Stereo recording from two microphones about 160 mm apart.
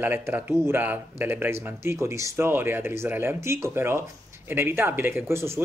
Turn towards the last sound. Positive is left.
turn(degrees=-15)  # may be behind; listen again after turning